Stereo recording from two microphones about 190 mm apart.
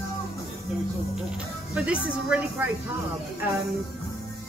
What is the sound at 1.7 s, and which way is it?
Speech, 5° right (ahead or behind).